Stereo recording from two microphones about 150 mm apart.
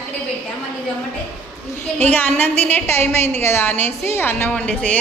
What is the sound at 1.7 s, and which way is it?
A woman's voice, 15° left (ahead or behind).